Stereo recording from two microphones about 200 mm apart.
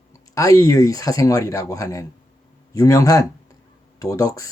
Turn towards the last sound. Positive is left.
turn(degrees=15)  # may be behind; listen again after turning